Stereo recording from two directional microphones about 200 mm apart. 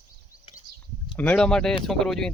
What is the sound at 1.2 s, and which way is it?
A man's voice, 5° left (ahead or behind).